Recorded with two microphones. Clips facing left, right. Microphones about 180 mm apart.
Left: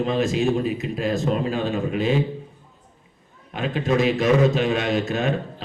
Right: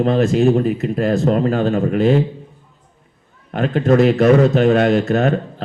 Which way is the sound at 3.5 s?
55° right (ahead or behind).